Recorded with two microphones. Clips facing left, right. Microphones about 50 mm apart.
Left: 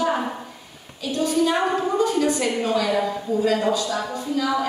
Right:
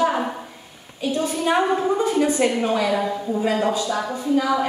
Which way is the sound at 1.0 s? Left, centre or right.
Right.